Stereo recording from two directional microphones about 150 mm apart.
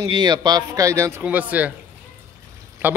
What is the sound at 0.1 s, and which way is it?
A man's voice, 30° right (ahead or behind).